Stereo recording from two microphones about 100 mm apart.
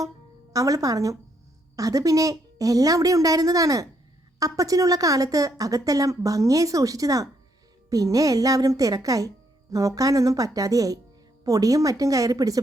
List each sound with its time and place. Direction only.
0.5 s a woman's voice: 35° right (ahead or behind)